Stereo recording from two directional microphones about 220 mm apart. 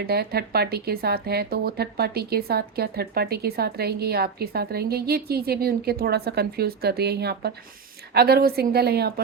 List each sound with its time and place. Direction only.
0.0 s speech: 45° right (ahead or behind)